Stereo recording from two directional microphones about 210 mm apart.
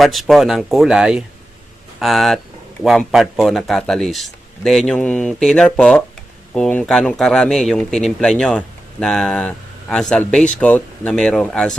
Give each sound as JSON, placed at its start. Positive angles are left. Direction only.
{"t": 0.0, "sound": "speech", "side_deg": 0}